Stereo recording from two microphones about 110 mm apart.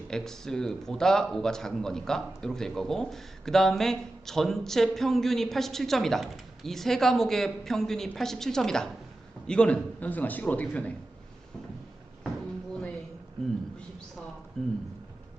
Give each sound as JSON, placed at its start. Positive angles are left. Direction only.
{"t": 0.1, "sound": "a man's voice", "side_deg": 5}
{"t": 14.6, "sound": "a man's voice", "side_deg": 5}